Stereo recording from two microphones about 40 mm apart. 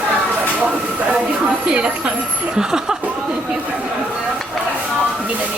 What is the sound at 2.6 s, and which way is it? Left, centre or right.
Chuckle, centre.